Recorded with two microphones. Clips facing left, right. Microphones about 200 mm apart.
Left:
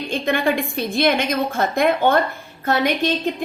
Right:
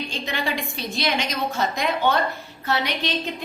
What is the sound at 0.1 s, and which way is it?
A woman's voice, 55° left (ahead or behind).